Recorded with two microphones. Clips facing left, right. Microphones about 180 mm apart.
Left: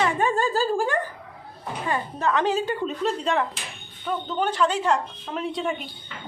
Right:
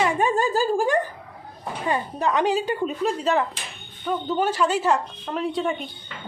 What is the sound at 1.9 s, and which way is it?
A woman's voice, 15° right (ahead or behind).